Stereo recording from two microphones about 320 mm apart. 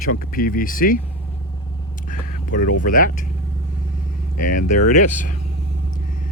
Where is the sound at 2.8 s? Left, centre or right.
Left.